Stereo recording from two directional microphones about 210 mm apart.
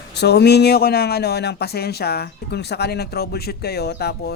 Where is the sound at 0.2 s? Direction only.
50° left (ahead or behind).